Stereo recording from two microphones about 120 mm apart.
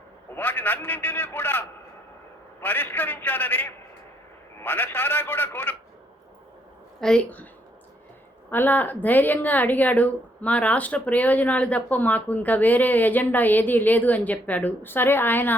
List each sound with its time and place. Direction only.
0.3 s speech: 15° left (ahead or behind)
7.0 s speech: 10° left (ahead or behind)
8.4 s speech: 15° left (ahead or behind)